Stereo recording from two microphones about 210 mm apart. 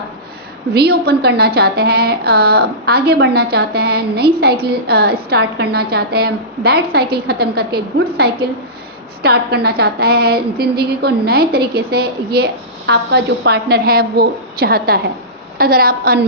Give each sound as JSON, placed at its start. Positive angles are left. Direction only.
{"t": 0.7, "sound": "a woman's voice", "side_deg": -50}